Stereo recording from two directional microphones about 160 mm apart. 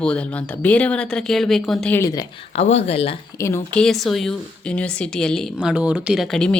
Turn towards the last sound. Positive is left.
turn(degrees=5)  # may be behind; listen again after turning